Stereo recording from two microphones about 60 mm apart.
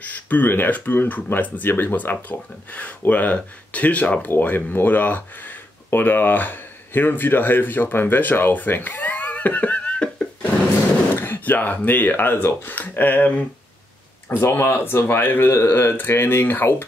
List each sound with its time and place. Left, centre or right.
0.0 s speech: left
11.1 s speech: left
14.3 s speech: left